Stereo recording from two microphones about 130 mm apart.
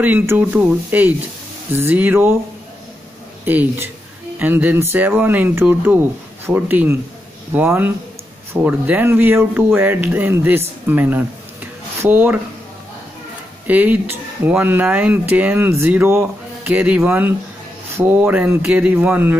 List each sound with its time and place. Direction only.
0.0 s speech: 15° right (ahead or behind)
3.4 s speech: 15° right (ahead or behind)
13.7 s speech: 10° right (ahead or behind)